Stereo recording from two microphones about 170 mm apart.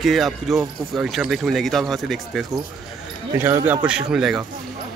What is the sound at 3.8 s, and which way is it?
Speech, 5° right (ahead or behind).